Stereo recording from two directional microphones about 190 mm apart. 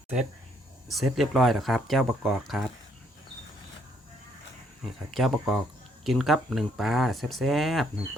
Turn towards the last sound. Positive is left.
turn(degrees=0)  # may be behind; listen again after turning